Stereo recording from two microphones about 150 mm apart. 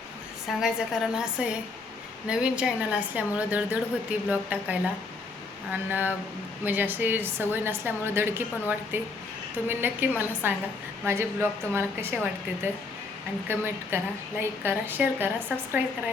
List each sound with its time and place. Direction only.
0.4 s a woman's voice: 5° right (ahead or behind)
13.5 s a woman's voice: 15° right (ahead or behind)